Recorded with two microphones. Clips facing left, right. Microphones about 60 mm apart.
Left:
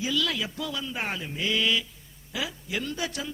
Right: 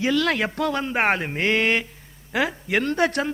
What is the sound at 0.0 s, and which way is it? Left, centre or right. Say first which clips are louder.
A man's voice: right 7 dB; right.